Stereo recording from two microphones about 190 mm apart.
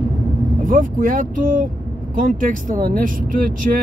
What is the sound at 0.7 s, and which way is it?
Speech, 45° right (ahead or behind).